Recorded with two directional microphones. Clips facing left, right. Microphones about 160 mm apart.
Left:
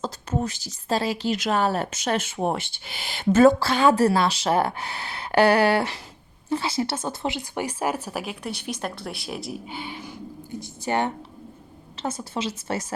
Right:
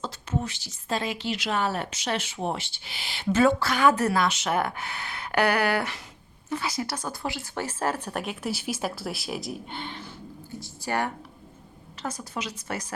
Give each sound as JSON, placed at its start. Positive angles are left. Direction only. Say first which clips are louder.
{"t": 0.0, "sound": "speech", "louder": "left 4 dB", "side_deg": 40}
{"t": 10.6, "sound": "a woman's voice", "louder": "left 4 dB", "side_deg": 20}